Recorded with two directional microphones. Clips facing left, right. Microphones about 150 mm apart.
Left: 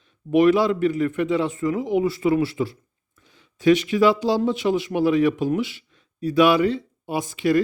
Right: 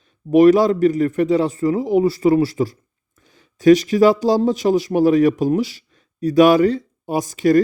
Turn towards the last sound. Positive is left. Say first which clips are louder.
# right 5 dB
turn(degrees=-40)  # may be behind; listen again after turning